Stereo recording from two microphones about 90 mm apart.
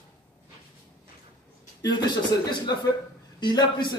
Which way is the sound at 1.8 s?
50° left (ahead or behind).